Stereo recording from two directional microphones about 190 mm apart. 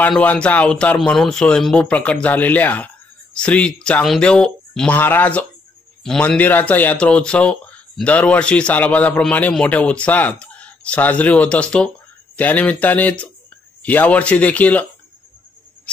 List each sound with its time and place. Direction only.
0.0 s speech: 5° left (ahead or behind)